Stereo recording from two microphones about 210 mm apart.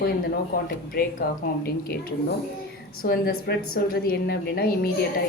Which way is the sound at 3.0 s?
55° left (ahead or behind).